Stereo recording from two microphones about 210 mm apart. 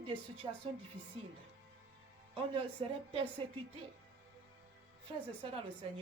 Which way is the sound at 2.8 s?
25° right (ahead or behind).